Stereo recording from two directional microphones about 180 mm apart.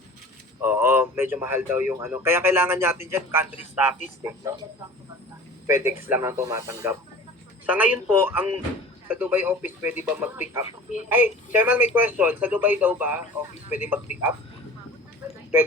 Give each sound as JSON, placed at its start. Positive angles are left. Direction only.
{"t": 0.6, "sound": "speech", "side_deg": -10}
{"t": 5.6, "sound": "speech", "side_deg": -15}